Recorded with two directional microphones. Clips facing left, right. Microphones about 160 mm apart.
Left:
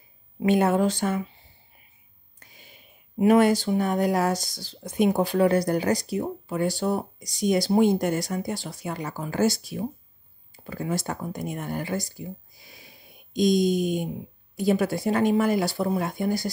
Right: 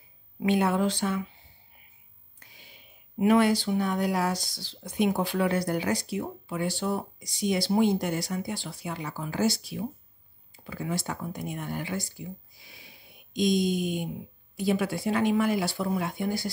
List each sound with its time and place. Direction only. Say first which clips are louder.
0.4 s speech: left 4 dB; 45° left (ahead or behind)
2.5 s a sound: left 2 dB; 45° left (ahead or behind)
3.2 s speech: left 3 dB; 45° left (ahead or behind)
13.3 s speech: left 4 dB; 40° left (ahead or behind)